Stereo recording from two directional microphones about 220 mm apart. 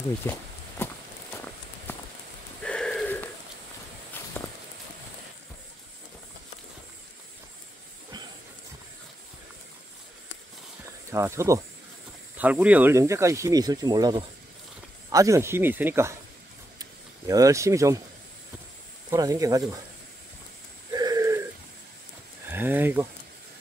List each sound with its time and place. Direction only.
0.2 s speech: 10° left (ahead or behind)
1.9 s a sound: 10° left (ahead or behind)
11.1 s speech: 15° right (ahead or behind)
17.3 s speech: 15° right (ahead or behind)
19.0 s speech: 15° right (ahead or behind)
20.9 s a sound: 15° right (ahead or behind)
22.5 s speech: 10° right (ahead or behind)